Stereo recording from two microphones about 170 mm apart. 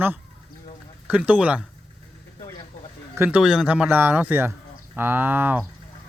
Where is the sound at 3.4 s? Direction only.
5° right (ahead or behind).